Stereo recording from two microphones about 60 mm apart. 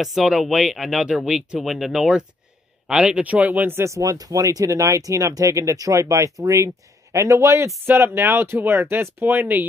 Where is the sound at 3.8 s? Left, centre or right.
Right.